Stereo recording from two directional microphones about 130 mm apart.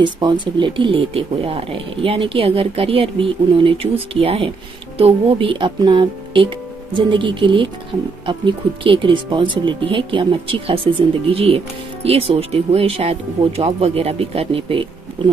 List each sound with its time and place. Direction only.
0.0 s speech: 35° right (ahead or behind)